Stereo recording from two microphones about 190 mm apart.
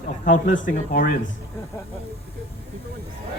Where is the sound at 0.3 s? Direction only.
45° left (ahead or behind).